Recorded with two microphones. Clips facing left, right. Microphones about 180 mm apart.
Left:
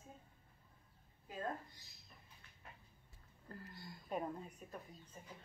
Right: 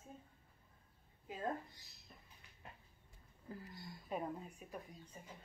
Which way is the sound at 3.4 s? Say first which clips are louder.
Right 2 dB; centre (ahead or behind).